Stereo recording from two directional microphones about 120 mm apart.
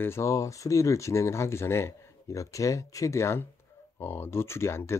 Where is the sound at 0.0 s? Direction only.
25° left (ahead or behind).